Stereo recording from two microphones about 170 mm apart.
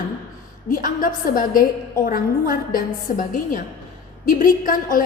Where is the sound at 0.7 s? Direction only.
50° left (ahead or behind).